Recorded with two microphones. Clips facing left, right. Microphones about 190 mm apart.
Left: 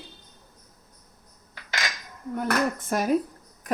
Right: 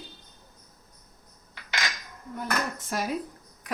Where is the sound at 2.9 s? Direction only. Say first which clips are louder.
Left 5 dB; 45° left (ahead or behind).